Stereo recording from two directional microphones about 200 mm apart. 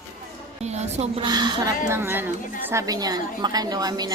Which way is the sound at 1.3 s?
20° right (ahead or behind).